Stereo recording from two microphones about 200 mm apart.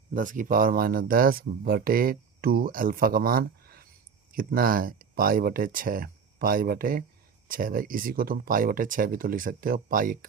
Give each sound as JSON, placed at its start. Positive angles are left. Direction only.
{"t": 0.1, "sound": "speech", "side_deg": -40}